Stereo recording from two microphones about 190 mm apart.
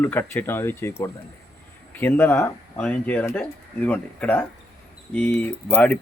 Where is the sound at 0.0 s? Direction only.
10° left (ahead or behind).